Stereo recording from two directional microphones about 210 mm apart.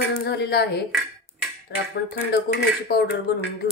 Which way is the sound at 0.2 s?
50° left (ahead or behind).